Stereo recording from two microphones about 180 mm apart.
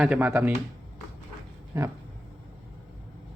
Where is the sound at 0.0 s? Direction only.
10° right (ahead or behind).